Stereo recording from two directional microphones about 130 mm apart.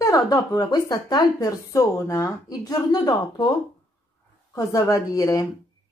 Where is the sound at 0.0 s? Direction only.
25° left (ahead or behind).